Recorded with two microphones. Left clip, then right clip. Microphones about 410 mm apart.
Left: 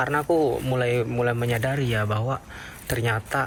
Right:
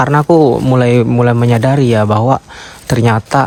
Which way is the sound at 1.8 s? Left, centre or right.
Centre.